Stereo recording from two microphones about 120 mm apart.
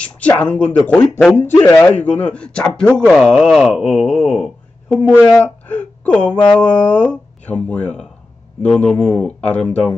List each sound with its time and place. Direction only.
0.2 s speech: 10° left (ahead or behind)
1.9 s speech: 10° left (ahead or behind)
3.1 s a sound: 5° left (ahead or behind)
4.0 s speech: 5° right (ahead or behind)
5.0 s speech: 10° right (ahead or behind)
5.7 s speech: 10° left (ahead or behind)